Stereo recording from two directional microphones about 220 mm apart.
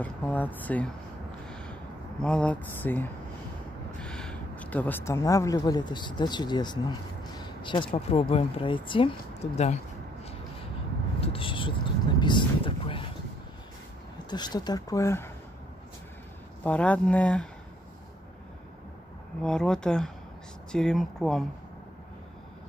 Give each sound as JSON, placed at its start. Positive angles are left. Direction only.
{"t": 0.0, "sound": "speech", "side_deg": 5}
{"t": 1.5, "sound": "a sound", "side_deg": 5}
{"t": 2.2, "sound": "speech", "side_deg": 5}
{"t": 11.1, "sound": "speech", "side_deg": 25}
{"t": 14.3, "sound": "speech", "side_deg": 20}
{"t": 16.6, "sound": "speech", "side_deg": 5}
{"t": 19.4, "sound": "speech", "side_deg": 5}